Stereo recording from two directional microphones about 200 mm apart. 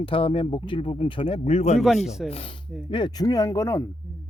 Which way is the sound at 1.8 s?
Centre (ahead or behind).